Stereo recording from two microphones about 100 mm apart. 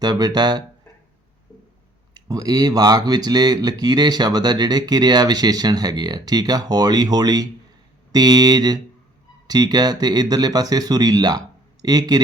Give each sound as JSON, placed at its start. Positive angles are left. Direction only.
{"t": 0.0, "sound": "speech", "side_deg": -45}
{"t": 2.1, "sound": "speech", "side_deg": -40}